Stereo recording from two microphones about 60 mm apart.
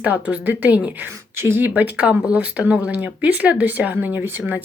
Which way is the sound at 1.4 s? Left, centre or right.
Right.